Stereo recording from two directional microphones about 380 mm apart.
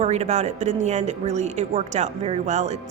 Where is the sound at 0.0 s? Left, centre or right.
Centre.